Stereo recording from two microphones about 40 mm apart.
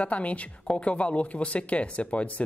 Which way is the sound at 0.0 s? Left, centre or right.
Left.